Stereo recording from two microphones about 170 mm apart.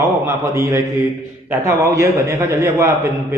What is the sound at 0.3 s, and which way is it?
A man's voice, 15° right (ahead or behind).